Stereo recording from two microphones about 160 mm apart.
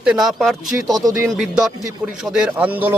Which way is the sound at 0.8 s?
25° right (ahead or behind).